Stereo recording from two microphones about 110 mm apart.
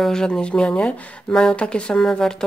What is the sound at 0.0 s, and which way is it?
Speech, 5° left (ahead or behind).